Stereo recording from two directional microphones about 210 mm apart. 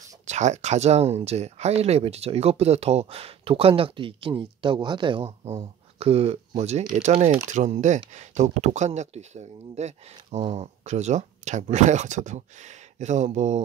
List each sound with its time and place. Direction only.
0.3 s speech: 35° right (ahead or behind)